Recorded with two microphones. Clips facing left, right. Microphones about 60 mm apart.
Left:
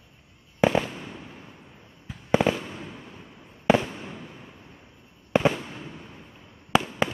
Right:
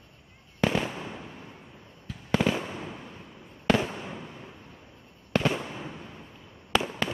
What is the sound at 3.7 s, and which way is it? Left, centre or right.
Fireworks, centre.